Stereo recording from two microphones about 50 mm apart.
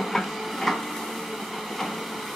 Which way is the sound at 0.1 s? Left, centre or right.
Centre.